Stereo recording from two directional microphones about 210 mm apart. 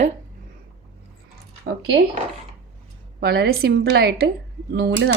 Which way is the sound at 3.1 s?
50° right (ahead or behind).